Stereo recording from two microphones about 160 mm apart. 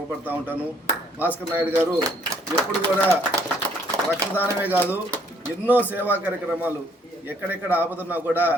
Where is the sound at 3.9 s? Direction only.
20° right (ahead or behind).